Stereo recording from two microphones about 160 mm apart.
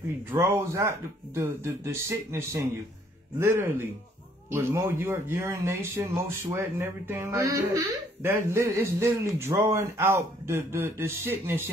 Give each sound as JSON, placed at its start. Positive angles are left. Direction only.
{"t": 0.3, "sound": "speech", "side_deg": -15}